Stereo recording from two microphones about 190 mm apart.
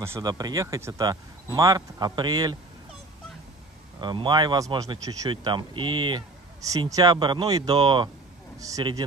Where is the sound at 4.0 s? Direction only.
25° right (ahead or behind).